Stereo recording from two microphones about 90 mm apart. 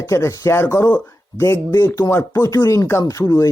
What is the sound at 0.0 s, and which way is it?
Speech, 35° left (ahead or behind).